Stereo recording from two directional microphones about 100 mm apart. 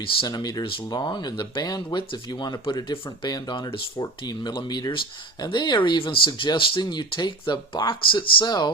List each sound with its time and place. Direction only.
0.2 s speech: 45° left (ahead or behind)